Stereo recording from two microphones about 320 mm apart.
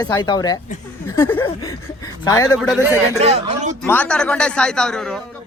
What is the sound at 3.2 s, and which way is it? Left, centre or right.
Speech, centre.